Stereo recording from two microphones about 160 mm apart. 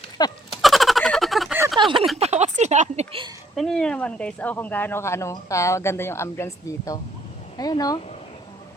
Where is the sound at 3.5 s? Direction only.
5° left (ahead or behind); by 8.0 s 25° left (ahead or behind).